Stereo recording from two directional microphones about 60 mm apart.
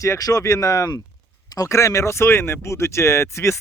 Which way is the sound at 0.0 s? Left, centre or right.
Left.